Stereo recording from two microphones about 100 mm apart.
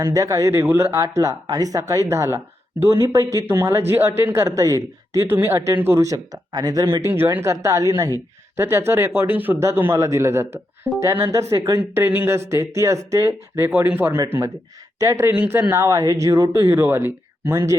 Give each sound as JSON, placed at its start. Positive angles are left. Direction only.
{"t": 0.0, "sound": "speech", "side_deg": -35}
{"t": 6.8, "sound": "speech", "side_deg": -25}
{"t": 13.7, "sound": "speech", "side_deg": -20}